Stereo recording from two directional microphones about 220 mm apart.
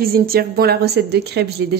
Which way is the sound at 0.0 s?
45° right (ahead or behind).